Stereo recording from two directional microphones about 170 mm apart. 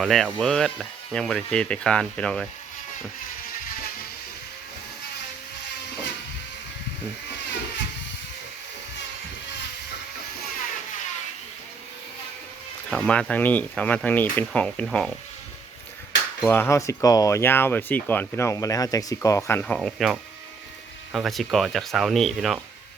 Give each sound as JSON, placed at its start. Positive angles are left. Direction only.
{"t": 0.0, "sound": "speech", "side_deg": 0}
{"t": 12.9, "sound": "speech", "side_deg": 5}
{"t": 16.5, "sound": "speech", "side_deg": 15}
{"t": 19.6, "sound": "speech", "side_deg": 5}